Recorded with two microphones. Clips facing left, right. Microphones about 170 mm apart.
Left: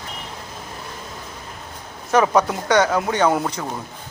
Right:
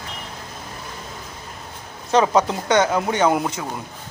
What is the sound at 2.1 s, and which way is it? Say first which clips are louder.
Speech: even; 20° right (ahead or behind).